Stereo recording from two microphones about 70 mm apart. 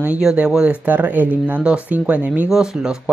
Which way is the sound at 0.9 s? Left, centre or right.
Right.